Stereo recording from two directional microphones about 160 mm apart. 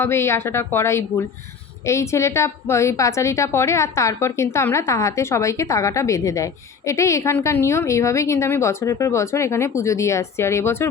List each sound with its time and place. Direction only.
0.0 s a woman's voice: 15° left (ahead or behind)